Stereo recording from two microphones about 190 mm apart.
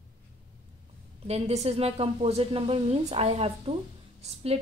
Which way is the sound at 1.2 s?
35° right (ahead or behind).